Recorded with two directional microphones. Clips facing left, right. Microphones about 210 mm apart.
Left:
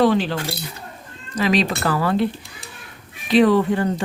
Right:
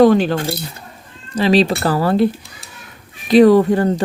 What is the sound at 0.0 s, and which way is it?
Speech, 45° right (ahead or behind).